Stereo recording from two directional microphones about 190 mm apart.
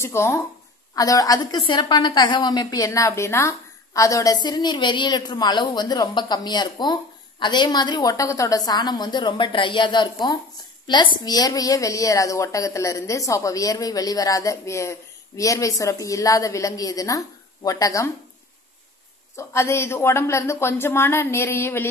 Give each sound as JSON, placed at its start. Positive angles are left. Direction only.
{"t": 0.0, "sound": "a woman's voice", "side_deg": 15}
{"t": 19.3, "sound": "a woman's voice", "side_deg": 15}